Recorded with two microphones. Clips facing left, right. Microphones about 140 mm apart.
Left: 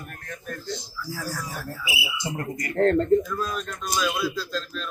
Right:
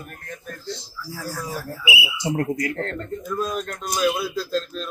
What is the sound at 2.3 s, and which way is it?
Speech, 90° right.